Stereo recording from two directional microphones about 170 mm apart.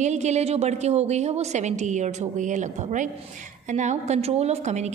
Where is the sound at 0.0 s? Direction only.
40° right (ahead or behind).